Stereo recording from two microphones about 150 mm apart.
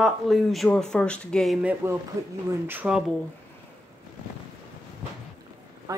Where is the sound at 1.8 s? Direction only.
15° right (ahead or behind).